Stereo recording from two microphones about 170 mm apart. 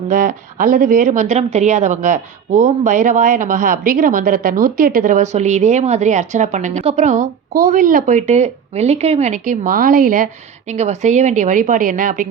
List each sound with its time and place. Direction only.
0.1 s speech: 50° right (ahead or behind)
10.7 s speech: 40° right (ahead or behind)